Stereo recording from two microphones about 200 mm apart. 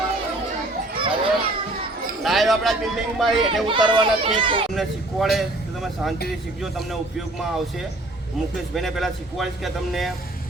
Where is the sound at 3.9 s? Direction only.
25° right (ahead or behind).